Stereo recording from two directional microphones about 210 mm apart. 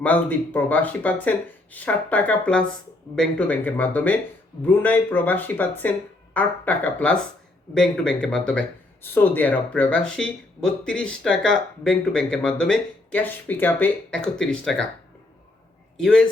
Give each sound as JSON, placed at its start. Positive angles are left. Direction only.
{"t": 0.0, "sound": "speech", "side_deg": 10}
{"t": 16.0, "sound": "a man's voice", "side_deg": 5}